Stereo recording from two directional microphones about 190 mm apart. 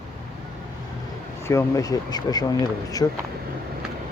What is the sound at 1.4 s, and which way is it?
Speech, 15° left (ahead or behind).